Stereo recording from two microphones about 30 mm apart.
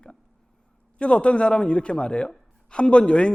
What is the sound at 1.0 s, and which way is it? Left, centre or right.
A man's voice, left.